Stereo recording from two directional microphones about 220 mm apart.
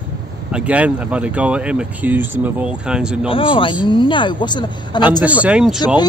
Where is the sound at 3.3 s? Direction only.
25° left (ahead or behind).